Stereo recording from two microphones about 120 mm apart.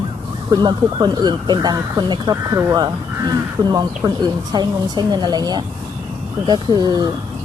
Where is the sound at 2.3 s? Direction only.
25° right (ahead or behind).